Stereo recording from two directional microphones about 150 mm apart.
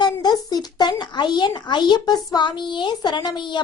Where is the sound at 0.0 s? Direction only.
25° left (ahead or behind).